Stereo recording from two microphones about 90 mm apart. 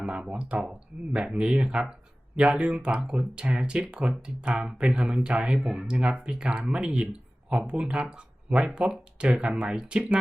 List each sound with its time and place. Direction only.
0.0 s speech: 15° right (ahead or behind)